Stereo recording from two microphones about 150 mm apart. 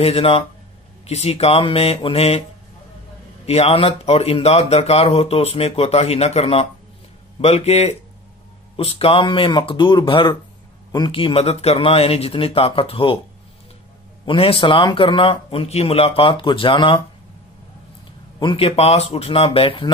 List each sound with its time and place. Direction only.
0.0 s a man's voice: 40° left (ahead or behind)
3.4 s a man's voice: 40° left (ahead or behind)
14.2 s a man's voice: 35° left (ahead or behind)
18.4 s a man's voice: 40° left (ahead or behind)